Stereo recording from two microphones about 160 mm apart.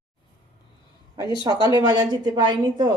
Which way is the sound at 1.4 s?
25° right (ahead or behind).